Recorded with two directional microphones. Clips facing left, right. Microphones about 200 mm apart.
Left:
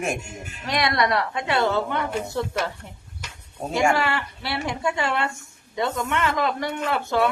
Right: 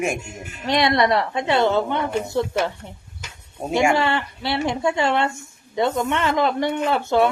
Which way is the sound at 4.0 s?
25° right (ahead or behind).